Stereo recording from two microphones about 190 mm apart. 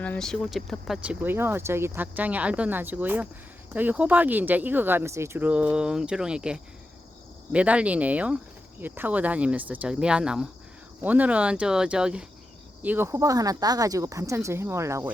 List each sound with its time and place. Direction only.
0.0 s speech: 5° left (ahead or behind); by 15.1 s 15° right (ahead or behind)